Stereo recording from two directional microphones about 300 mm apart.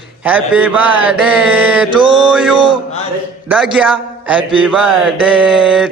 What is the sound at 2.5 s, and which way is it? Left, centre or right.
Mantra, centre.